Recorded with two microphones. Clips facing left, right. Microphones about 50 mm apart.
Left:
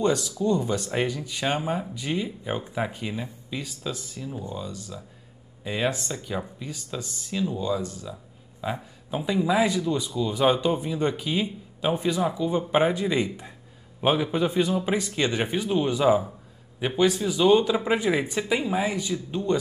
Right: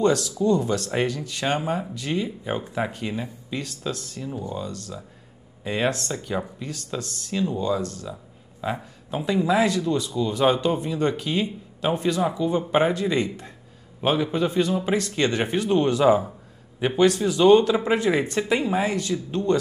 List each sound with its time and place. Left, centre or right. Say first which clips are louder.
0.0 s speech: right 3 dB; centre
8.1 s a sound: right 2 dB; centre
9.1 s speech: right 2 dB; centre